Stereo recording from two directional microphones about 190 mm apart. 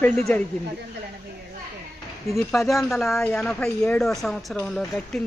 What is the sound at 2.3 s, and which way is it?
Speech, centre (ahead or behind).